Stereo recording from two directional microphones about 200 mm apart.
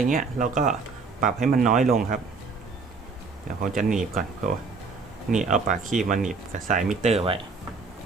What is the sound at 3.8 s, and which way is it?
Speech, centre (ahead or behind).